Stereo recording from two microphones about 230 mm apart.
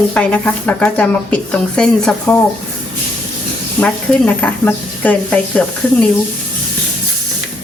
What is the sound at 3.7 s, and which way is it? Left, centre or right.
Speech, centre.